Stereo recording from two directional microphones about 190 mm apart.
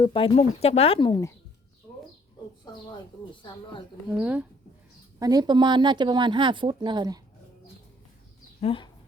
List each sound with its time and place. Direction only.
0.0 s speech: 25° left (ahead or behind)
4.2 s speech: 5° right (ahead or behind)
5.2 s speech: 20° right (ahead or behind)
8.6 s speech: 25° left (ahead or behind)